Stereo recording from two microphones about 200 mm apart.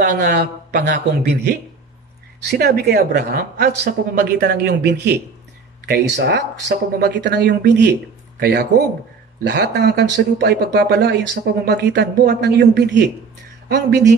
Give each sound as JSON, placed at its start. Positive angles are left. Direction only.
{"t": 0.0, "sound": "a man's voice", "side_deg": -55}
{"t": 2.4, "sound": "speech", "side_deg": -55}